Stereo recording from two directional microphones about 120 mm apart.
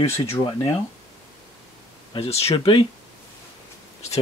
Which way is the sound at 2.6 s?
45° left (ahead or behind).